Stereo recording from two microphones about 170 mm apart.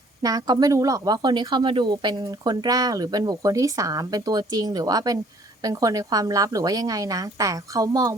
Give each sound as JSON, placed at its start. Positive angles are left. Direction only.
{"t": 0.2, "sound": "speech", "side_deg": -20}